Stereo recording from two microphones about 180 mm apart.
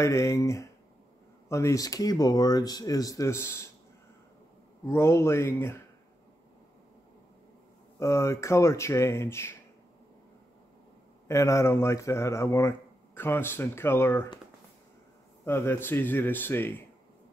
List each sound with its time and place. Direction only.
0.0 s speech: 15° left (ahead or behind)
4.8 s speech: 15° left (ahead or behind)
8.0 s speech: 15° left (ahead or behind)
11.2 s speech: 15° left (ahead or behind)
15.4 s speech: 15° left (ahead or behind)